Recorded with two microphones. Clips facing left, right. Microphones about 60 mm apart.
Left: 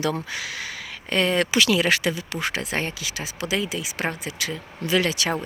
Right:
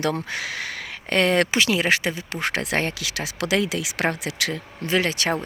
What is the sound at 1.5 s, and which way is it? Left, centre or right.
Speech, right.